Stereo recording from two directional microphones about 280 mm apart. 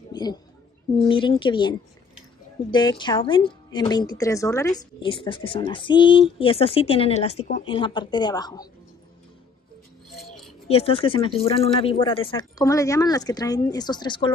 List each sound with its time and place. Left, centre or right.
0.1 s a sound: centre
0.9 s a woman's voice: centre
10.7 s a woman's voice: centre